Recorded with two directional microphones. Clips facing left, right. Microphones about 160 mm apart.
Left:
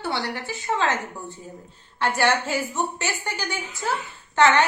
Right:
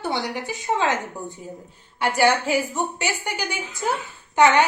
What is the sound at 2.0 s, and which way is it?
A woman's voice, 10° right (ahead or behind).